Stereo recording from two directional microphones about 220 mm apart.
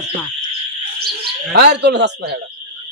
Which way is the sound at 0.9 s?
50° right (ahead or behind).